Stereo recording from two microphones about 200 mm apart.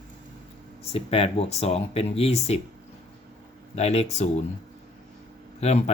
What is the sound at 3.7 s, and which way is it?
Speech, 30° left (ahead or behind).